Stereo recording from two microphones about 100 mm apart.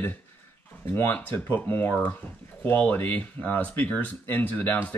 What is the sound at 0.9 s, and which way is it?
Speech, 20° left (ahead or behind).